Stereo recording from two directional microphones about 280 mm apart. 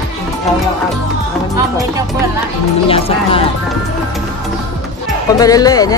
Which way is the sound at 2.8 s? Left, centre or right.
Centre.